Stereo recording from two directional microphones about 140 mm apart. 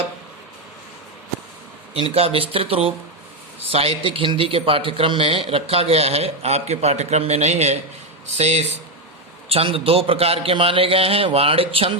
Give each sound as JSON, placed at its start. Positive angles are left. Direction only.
{"t": 1.9, "sound": "a man's voice", "side_deg": -40}
{"t": 9.5, "sound": "a man's voice", "side_deg": -40}